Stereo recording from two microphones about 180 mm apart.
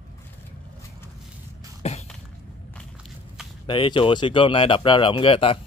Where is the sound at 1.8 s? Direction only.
35° left (ahead or behind).